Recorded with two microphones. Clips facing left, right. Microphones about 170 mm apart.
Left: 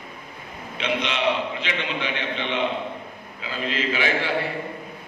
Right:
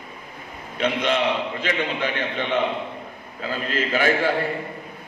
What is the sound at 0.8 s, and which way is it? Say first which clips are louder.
A man's voice: right 4 dB; 45° right (ahead or behind).